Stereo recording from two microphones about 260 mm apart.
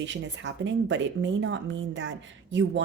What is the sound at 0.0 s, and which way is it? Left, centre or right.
Speech, right.